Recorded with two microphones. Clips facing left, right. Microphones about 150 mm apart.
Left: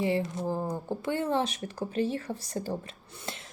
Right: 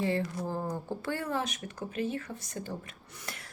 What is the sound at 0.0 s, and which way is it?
Speech, 20° left (ahead or behind).